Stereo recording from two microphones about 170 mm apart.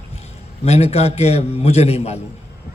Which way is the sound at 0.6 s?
40° left (ahead or behind).